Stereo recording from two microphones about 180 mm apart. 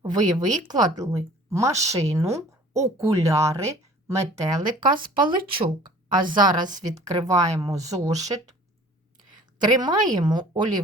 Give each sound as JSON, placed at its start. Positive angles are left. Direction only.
{"t": 0.0, "sound": "speech", "side_deg": -20}
{"t": 9.6, "sound": "speech", "side_deg": -25}